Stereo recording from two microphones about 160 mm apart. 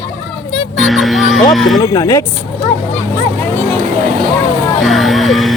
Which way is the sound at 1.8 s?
20° left (ahead or behind).